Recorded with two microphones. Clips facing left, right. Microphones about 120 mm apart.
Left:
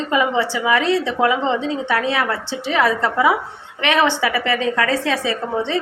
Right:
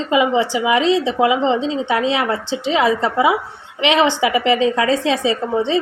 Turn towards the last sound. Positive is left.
turn(degrees=-20)  # may be behind; listen again after turning